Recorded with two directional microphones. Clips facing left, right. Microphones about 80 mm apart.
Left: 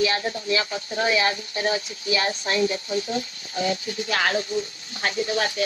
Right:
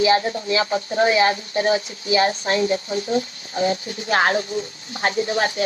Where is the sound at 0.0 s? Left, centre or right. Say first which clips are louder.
Right 6 dB; right.